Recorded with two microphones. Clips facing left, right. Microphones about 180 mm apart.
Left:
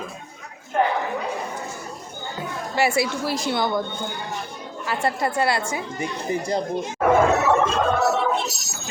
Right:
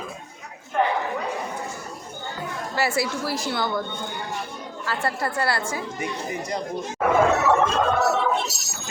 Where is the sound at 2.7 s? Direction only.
15° left (ahead or behind).